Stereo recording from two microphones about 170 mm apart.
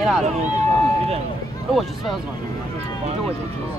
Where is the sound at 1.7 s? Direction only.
Centre (ahead or behind).